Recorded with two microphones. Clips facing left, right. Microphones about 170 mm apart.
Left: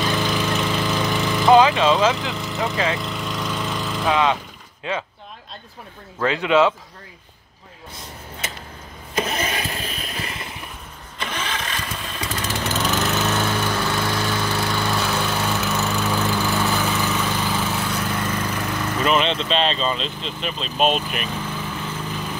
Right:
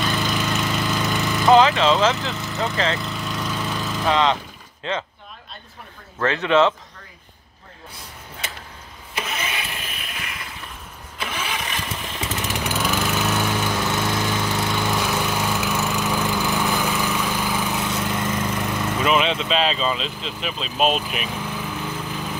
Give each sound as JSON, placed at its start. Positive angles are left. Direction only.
{"t": 0.2, "sound": "lawn mower", "side_deg": 0}
{"t": 1.4, "sound": "speech", "side_deg": 10}
{"t": 2.5, "sound": "speech", "side_deg": 0}
{"t": 3.0, "sound": "lawn mower", "side_deg": 0}
{"t": 4.1, "sound": "speech", "side_deg": 10}
{"t": 6.1, "sound": "speech", "side_deg": 15}
{"t": 9.1, "sound": "engine starting", "side_deg": 40}
{"t": 11.1, "sound": "lawn mower", "side_deg": -5}
{"t": 18.9, "sound": "speech", "side_deg": -5}